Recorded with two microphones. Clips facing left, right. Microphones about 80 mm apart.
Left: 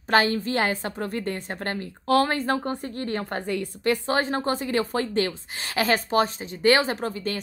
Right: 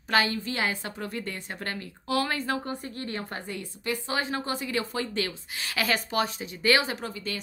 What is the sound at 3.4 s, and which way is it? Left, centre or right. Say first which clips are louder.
Speech: left 8 dB; left.